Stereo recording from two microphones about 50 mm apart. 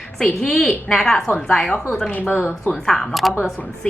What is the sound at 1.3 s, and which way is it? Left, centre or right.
Speech, left.